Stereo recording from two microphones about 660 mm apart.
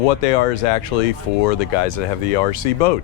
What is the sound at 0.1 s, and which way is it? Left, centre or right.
Speech, left.